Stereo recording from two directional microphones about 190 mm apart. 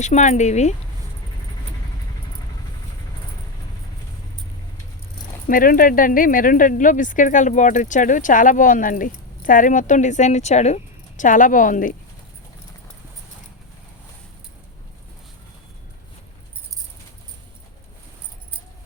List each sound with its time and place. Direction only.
0.0 s speech: 40° left (ahead or behind)
5.5 s speech: 45° left (ahead or behind)